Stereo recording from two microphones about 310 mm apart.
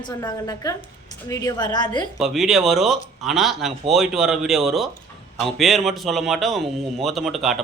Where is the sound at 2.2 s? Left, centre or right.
Centre.